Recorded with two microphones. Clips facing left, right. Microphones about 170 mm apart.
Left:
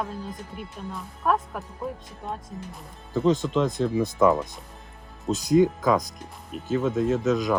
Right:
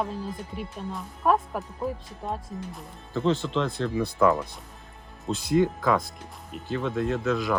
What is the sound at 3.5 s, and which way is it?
Speech, 15° left (ahead or behind).